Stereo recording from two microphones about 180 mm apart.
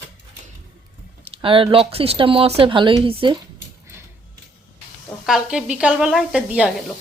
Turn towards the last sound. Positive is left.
turn(degrees=-5)  # may be behind; listen again after turning